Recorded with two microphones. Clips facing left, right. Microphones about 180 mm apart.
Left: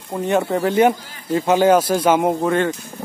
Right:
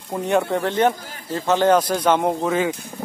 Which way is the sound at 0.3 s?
Centre (ahead or behind).